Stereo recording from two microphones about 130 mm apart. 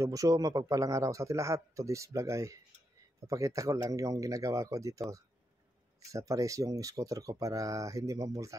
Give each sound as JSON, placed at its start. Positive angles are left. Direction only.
{"t": 0.0, "sound": "speech", "side_deg": -25}